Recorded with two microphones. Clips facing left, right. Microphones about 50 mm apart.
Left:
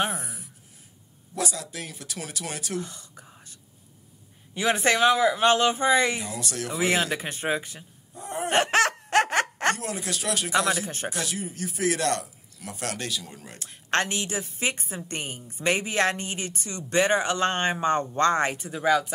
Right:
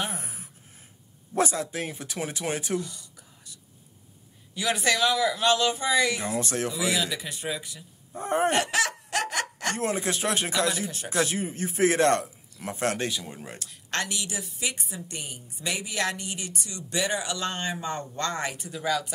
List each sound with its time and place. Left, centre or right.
0.0 s a sound: left
1.3 s a man's voice: right
2.8 s whispering: left
4.6 s a woman's voice: left
6.2 s speech: right
6.7 s a woman's voice: left
8.1 s a sound: right
8.5 s a sound: left
9.8 s a man's voice: right
10.5 s a woman's voice: left
11.1 s a man's voice: right
13.6 s a woman's voice: left